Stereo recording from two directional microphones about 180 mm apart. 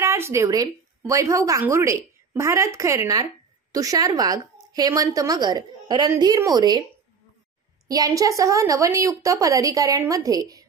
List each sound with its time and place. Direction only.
0.0 s a woman's voice: 15° right (ahead or behind)
7.9 s a woman's voice: 20° right (ahead or behind)